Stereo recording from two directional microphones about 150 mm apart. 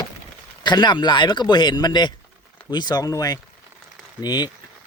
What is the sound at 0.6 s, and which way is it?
Speech, 30° left (ahead or behind).